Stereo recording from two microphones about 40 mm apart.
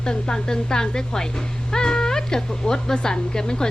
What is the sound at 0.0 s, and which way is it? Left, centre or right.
A woman's voice, centre.